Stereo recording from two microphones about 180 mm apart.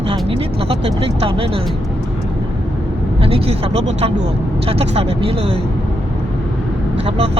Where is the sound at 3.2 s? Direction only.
30° right (ahead or behind).